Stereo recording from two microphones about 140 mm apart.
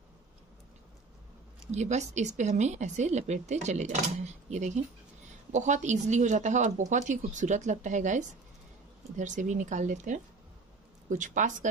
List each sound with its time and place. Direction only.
1.7 s speech: 55° right (ahead or behind)